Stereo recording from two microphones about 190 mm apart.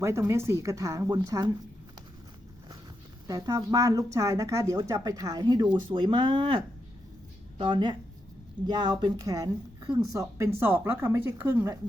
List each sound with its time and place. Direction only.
0.0 s speech: 15° right (ahead or behind)
3.2 s speech: 20° right (ahead or behind)
7.6 s speech: 25° right (ahead or behind)